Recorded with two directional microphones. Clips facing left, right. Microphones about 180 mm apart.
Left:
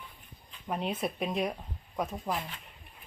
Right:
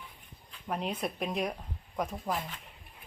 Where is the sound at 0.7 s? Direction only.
5° left (ahead or behind).